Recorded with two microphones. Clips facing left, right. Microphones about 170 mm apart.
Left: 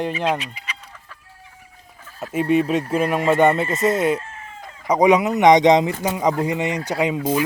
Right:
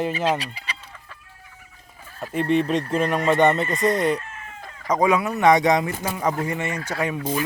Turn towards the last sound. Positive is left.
turn(degrees=15)  # may be behind; listen again after turning